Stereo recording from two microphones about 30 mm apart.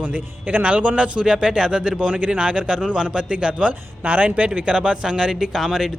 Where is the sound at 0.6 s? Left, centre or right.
Right.